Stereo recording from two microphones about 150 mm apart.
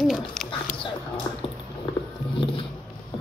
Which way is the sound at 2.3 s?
35° left (ahead or behind).